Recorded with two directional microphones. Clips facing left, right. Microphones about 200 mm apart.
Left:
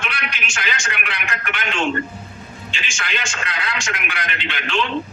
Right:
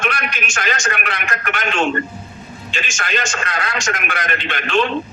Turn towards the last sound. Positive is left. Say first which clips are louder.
# right 5 dB
turn(degrees=-45)  # may be behind; listen again after turning